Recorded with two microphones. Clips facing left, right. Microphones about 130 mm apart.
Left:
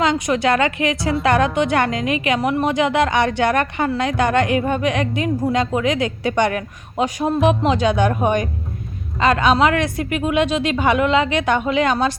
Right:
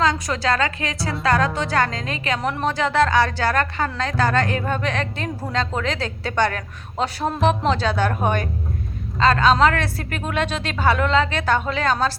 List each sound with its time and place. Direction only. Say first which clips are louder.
0.0 s a woman's voice: left 4 dB; 20° left (ahead or behind)